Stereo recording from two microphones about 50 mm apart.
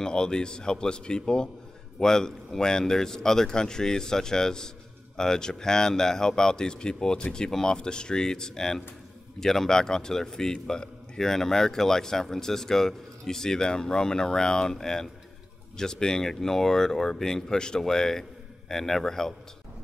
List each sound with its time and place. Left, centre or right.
0.0 s a man's voice: centre